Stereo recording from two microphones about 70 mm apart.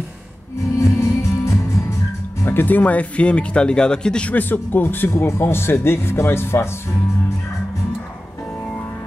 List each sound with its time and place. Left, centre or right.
0.7 s music: left
2.4 s speech: left